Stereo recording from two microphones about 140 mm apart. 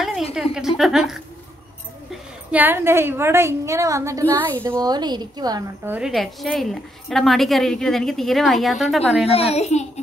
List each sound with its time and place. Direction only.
0.3 s a woman's voice: 5° right (ahead or behind)
2.5 s a woman's voice: 15° right (ahead or behind)
5.9 s a woman's voice: 5° right (ahead or behind)
9.2 s a child's voice: 45° left (ahead or behind)